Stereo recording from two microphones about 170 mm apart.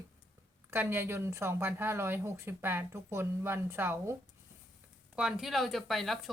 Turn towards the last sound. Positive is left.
turn(degrees=0)  # may be behind; listen again after turning